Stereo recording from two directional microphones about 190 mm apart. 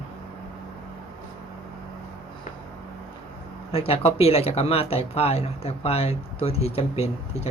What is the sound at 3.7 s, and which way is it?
Speech, 30° left (ahead or behind).